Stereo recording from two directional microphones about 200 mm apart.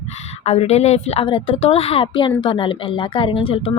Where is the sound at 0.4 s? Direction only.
30° left (ahead or behind).